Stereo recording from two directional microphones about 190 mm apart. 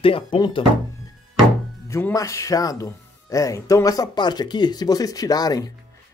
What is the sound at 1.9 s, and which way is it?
Speech, 15° left (ahead or behind).